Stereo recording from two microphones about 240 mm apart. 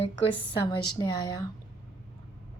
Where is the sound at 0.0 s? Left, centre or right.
Left.